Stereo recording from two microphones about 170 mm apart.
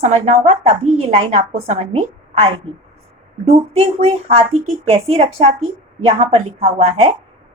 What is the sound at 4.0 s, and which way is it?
A woman's voice, 35° right (ahead or behind).